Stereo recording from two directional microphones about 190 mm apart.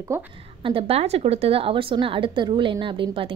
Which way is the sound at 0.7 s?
30° right (ahead or behind).